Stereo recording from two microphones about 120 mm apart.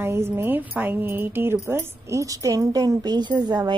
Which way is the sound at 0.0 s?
20° right (ahead or behind).